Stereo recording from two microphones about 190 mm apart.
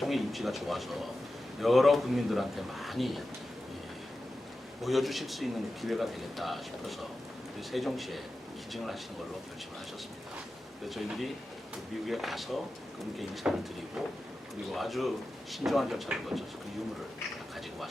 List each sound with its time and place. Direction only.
0.0 s a man's voice: centre (ahead or behind)
4.8 s a man's voice: centre (ahead or behind)
10.8 s a man's voice: centre (ahead or behind)
14.7 s a man's voice: centre (ahead or behind)